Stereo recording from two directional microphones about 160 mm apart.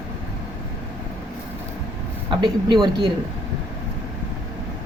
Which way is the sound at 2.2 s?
30° right (ahead or behind).